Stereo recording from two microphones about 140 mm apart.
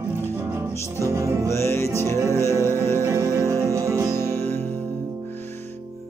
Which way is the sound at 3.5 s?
20° right (ahead or behind).